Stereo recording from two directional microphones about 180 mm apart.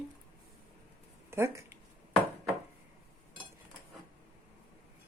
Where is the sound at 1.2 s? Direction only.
15° right (ahead or behind).